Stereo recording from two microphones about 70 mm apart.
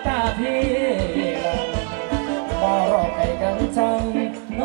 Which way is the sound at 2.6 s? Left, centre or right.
Centre.